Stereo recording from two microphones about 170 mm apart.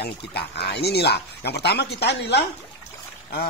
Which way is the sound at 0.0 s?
70° left (ahead or behind).